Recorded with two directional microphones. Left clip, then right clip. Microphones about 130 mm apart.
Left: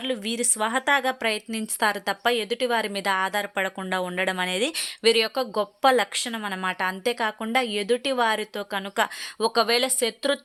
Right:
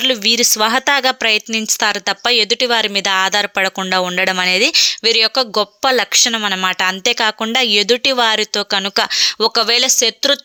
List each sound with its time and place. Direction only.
0.0 s speech: 20° right (ahead or behind)
0.9 s speech: 15° right (ahead or behind)